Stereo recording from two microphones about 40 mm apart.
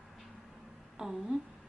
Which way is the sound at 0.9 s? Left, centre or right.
Centre.